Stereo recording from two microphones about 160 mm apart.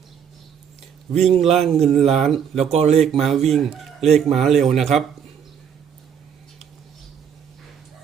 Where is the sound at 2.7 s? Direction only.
40° right (ahead or behind).